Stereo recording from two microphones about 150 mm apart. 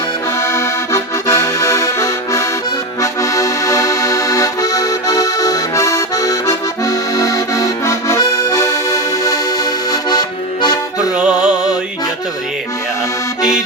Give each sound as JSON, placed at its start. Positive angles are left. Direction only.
{"t": 0.4, "sound": "accordion", "side_deg": 20}
{"t": 11.2, "sound": "music", "side_deg": -5}